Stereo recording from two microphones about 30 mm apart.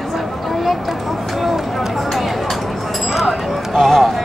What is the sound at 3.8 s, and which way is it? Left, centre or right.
Run, centre.